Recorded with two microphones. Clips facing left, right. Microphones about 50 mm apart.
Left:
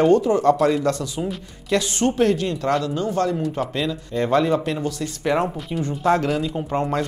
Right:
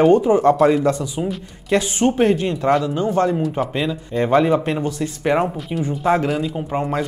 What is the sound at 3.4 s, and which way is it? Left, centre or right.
Speech, centre.